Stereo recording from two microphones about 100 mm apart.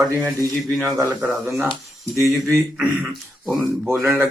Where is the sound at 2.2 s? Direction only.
30° right (ahead or behind).